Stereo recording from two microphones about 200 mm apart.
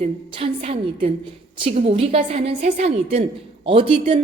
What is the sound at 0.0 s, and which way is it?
A woman's voice, 30° right (ahead or behind).